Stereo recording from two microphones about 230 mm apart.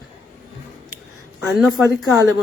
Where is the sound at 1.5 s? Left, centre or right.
Centre.